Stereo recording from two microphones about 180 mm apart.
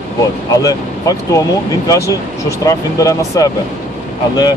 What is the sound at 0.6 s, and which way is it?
Speech, 20° left (ahead or behind).